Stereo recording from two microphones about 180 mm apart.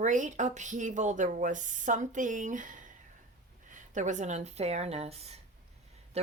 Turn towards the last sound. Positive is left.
turn(degrees=-35)  # may be behind; listen again after turning